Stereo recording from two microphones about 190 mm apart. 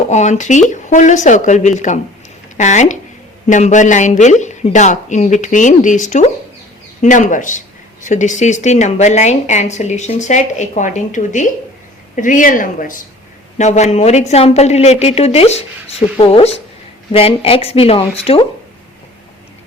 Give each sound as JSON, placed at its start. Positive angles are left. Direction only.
{"t": 0.1, "sound": "a woman's voice", "side_deg": 40}